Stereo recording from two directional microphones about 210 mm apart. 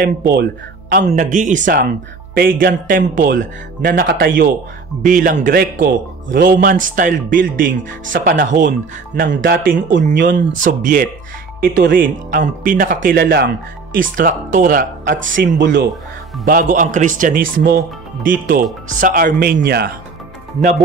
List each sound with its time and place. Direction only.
0.3 s speech: 50° right (ahead or behind)
15.2 s speech: 65° right (ahead or behind)
15.5 s speech: 45° right (ahead or behind)